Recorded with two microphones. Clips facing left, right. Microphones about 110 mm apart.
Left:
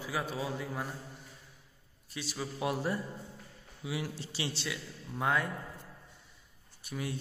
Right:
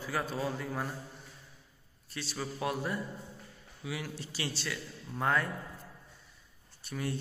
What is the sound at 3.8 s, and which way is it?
Speech, 25° left (ahead or behind).